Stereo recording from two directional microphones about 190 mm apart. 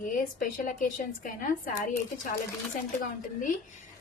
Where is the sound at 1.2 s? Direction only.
45° left (ahead or behind).